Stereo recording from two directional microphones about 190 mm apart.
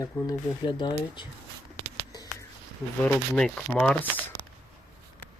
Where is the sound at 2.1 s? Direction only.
20° left (ahead or behind).